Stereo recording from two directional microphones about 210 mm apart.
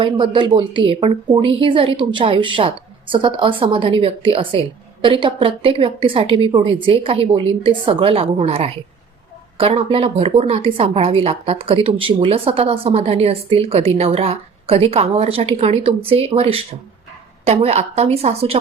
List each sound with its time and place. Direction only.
0.0 s a woman's voice: 25° right (ahead or behind)